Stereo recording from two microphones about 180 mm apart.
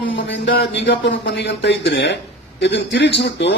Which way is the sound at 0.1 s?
90° left.